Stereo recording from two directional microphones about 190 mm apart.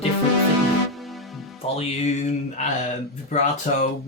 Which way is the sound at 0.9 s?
Centre (ahead or behind).